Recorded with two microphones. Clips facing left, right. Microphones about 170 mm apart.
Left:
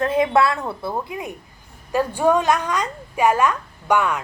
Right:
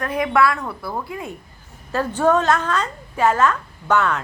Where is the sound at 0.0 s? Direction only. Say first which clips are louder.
Left 1 dB; 25° left (ahead or behind).